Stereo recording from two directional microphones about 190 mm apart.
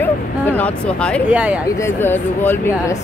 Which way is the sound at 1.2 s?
5° right (ahead or behind).